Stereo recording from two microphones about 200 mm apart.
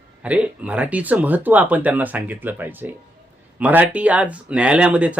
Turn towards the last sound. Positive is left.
turn(degrees=-5)  # may be behind; listen again after turning